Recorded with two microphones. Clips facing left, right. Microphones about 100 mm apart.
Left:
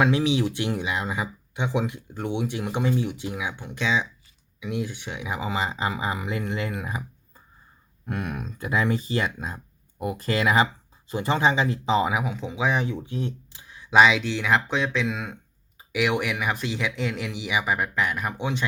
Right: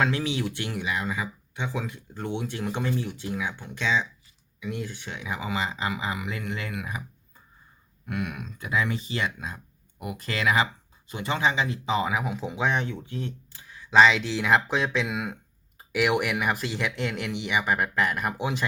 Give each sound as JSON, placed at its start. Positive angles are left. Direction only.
{"t": 0.0, "sound": "speech", "side_deg": 15}
{"t": 5.4, "sound": "speech", "side_deg": 30}
{"t": 8.0, "sound": "speech", "side_deg": 35}
{"t": 12.2, "sound": "speech", "side_deg": 0}
{"t": 13.0, "sound": "speech", "side_deg": 20}